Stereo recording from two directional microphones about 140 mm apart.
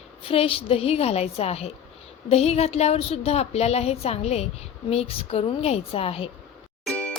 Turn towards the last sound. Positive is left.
turn(degrees=10)  # may be behind; listen again after turning